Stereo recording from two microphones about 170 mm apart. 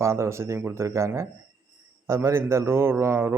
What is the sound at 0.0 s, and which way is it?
A man's voice, 15° right (ahead or behind).